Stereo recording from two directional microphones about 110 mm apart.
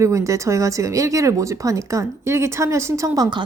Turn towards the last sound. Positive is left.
turn(degrees=-30)  # may be behind; listen again after turning